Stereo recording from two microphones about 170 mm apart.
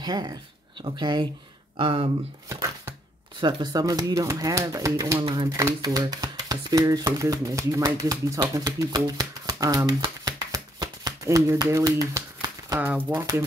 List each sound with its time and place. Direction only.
0.0 s speech: 25° right (ahead or behind)
2.5 s speech: 20° right (ahead or behind)